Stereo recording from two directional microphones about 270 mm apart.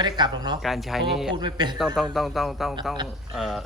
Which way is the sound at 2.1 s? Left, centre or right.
Centre.